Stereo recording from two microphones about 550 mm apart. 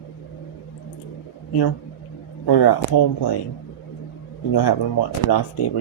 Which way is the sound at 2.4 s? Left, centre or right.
Left.